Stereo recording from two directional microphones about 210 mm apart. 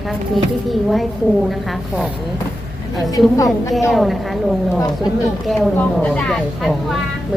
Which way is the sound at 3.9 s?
Centre (ahead or behind).